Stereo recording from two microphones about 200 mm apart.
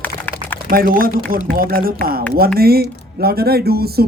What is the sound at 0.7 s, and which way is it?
Speech, 45° right (ahead or behind).